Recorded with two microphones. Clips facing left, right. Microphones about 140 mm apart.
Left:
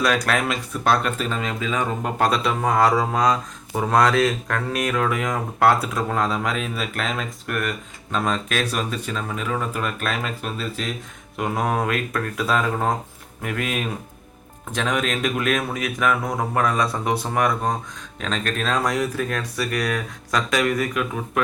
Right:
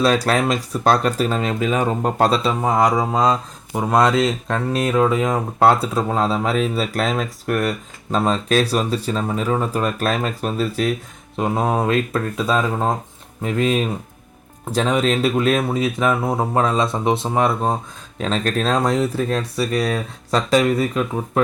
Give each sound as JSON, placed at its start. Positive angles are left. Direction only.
{"t": 0.0, "sound": "speech", "side_deg": -30}
{"t": 2.6, "sound": "speech", "side_deg": -20}
{"t": 11.3, "sound": "speech", "side_deg": -30}